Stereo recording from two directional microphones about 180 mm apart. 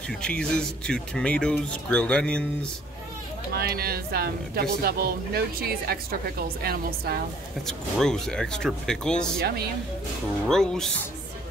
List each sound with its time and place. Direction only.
0.2 s speech: 5° left (ahead or behind)
3.5 s speech: 60° right (ahead or behind)
7.6 s speech: 5° left (ahead or behind)
10.5 s speech: 5° left (ahead or behind)